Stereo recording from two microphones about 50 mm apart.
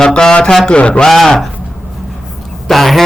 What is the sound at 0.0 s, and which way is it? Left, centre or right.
Speech, centre.